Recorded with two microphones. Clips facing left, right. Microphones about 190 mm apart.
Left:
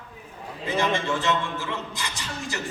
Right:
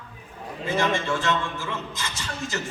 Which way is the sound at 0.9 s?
15° left (ahead or behind).